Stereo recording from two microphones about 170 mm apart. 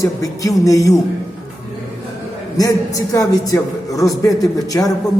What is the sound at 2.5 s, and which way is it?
A man's voice, 20° left (ahead or behind).